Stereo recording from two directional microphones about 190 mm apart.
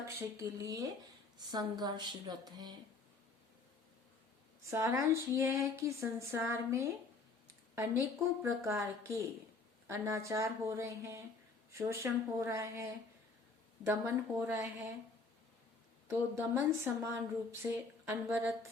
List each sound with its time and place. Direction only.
0.2 s a woman's voice: 15° right (ahead or behind)
4.7 s a woman's voice: 15° right (ahead or behind)
16.4 s a woman's voice: 10° right (ahead or behind)